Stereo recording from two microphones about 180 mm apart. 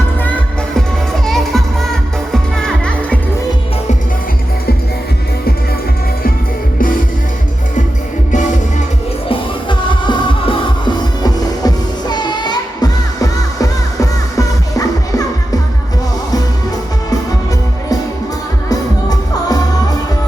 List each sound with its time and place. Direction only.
0.8 s music: centre (ahead or behind)
9.3 s music: 30° left (ahead or behind)
18.7 s music: 20° left (ahead or behind)